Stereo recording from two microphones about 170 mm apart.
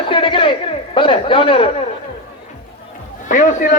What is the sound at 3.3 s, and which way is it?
Speech, 50° left (ahead or behind).